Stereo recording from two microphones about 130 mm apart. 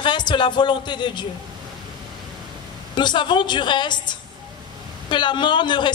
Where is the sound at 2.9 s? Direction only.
35° left (ahead or behind).